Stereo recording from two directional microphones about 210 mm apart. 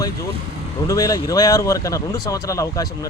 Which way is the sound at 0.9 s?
15° left (ahead or behind).